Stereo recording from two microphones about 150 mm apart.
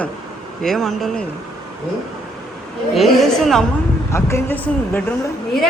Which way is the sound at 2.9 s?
Centre (ahead or behind).